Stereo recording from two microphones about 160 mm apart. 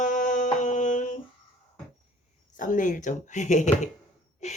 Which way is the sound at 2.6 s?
55° left (ahead or behind).